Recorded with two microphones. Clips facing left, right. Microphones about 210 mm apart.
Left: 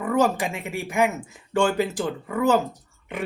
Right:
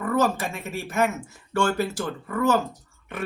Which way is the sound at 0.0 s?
15° left (ahead or behind).